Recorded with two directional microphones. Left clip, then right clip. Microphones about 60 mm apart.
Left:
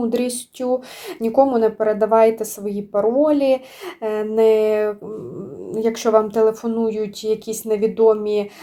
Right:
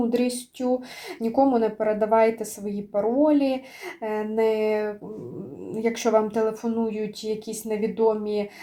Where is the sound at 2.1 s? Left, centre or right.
Left.